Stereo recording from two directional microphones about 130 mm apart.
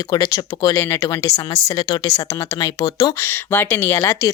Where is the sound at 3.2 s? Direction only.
15° left (ahead or behind).